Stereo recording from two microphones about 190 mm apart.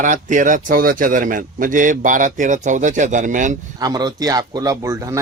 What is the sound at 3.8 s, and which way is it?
Speech, 20° right (ahead or behind).